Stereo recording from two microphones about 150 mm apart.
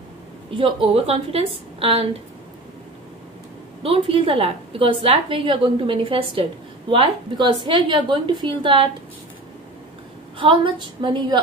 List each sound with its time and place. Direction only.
0.5 s a woman's voice: 35° right (ahead or behind)
3.8 s a woman's voice: 40° right (ahead or behind)
10.4 s a woman's voice: 35° right (ahead or behind)